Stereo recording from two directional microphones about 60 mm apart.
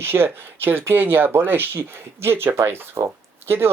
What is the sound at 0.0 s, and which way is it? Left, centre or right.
Speech, right.